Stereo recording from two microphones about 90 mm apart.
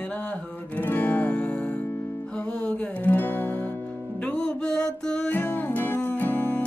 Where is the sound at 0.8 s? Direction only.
20° left (ahead or behind).